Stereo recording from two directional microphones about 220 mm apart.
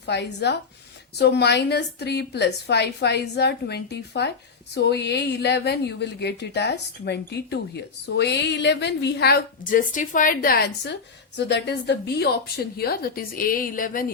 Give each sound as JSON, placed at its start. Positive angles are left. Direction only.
{"t": 0.0, "sound": "a woman's voice", "side_deg": 50}